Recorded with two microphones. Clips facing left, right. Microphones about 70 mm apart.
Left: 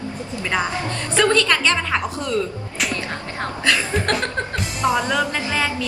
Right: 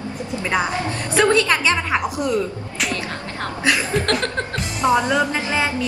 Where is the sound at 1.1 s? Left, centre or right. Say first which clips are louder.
Right 1 dB; centre.